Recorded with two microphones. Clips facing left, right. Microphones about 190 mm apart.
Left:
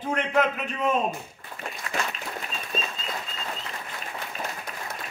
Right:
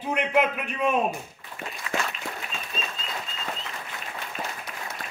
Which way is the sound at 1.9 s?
45° left (ahead or behind).